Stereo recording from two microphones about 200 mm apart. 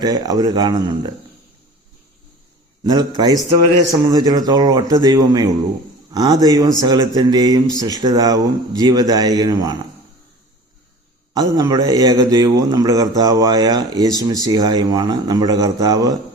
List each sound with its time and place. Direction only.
0.0 s a man's voice: 20° right (ahead or behind)
2.8 s a man's voice: 20° right (ahead or behind)
11.3 s a man's voice: 20° right (ahead or behind)